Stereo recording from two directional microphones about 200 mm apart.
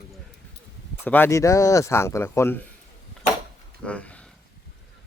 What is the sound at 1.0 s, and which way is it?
Speech, 10° left (ahead or behind).